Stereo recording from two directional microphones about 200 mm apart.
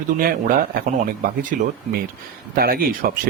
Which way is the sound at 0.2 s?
45° right (ahead or behind).